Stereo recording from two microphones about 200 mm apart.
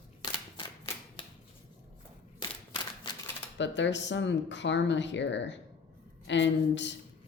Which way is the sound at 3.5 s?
65° left (ahead or behind).